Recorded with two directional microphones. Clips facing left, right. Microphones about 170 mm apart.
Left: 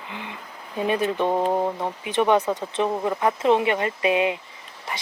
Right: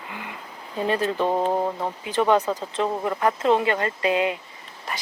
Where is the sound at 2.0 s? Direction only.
20° left (ahead or behind).